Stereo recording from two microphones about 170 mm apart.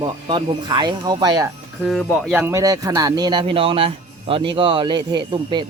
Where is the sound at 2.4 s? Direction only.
20° right (ahead or behind).